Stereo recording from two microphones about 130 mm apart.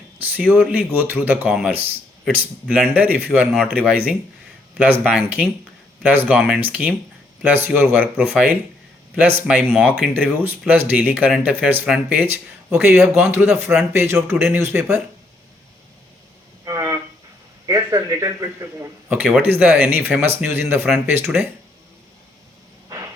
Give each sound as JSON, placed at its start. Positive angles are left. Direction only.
{"t": 0.2, "sound": "a man's voice", "side_deg": -10}
{"t": 16.6, "sound": "a sound", "side_deg": -25}
{"t": 17.7, "sound": "a man's voice", "side_deg": -25}